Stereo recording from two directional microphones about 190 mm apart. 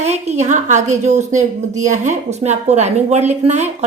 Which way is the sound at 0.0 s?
35° right (ahead or behind).